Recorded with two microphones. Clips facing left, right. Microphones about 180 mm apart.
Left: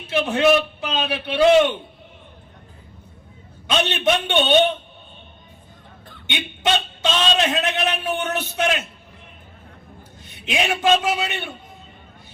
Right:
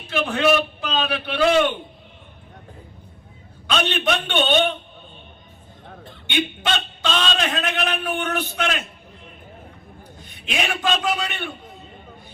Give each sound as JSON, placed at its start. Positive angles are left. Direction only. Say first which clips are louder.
{"t": 0.1, "sound": "a man's voice", "louder": "left 2 dB", "side_deg": 20}
{"t": 3.7, "sound": "a man's voice", "louder": "left 2 dB", "side_deg": 20}
{"t": 6.3, "sound": "a man's voice", "louder": "left 1 dB", "side_deg": 20}
{"t": 10.5, "sound": "a man's voice", "louder": "left 4 dB", "side_deg": 20}